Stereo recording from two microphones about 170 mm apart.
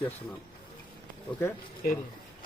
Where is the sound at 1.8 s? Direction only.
55° left (ahead or behind).